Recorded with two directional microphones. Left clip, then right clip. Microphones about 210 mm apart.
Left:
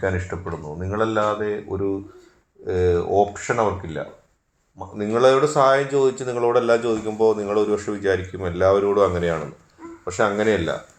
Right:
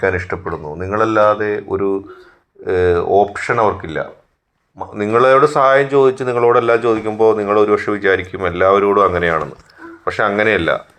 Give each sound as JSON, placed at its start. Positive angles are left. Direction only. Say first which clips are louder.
{"t": 0.0, "sound": "speech", "louder": "right 8 dB", "side_deg": -30}